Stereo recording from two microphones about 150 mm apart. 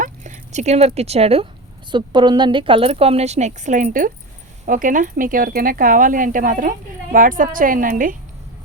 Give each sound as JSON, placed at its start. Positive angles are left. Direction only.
{"t": 0.0, "sound": "speech", "side_deg": -55}
{"t": 1.9, "sound": "a woman's voice", "side_deg": -30}